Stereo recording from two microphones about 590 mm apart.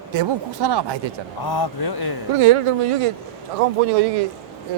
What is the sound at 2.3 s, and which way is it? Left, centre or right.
Speech, right.